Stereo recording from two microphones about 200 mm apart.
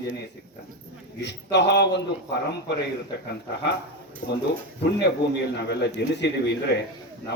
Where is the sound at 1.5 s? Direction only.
60° left (ahead or behind).